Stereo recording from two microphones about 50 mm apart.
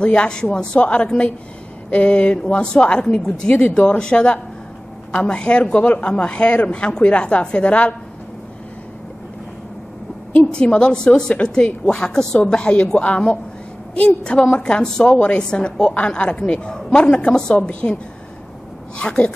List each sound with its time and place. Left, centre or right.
0.0 s a woman's voice: left
3.5 s a woman's voice: left
10.4 s a woman's voice: left
18.9 s a woman's voice: left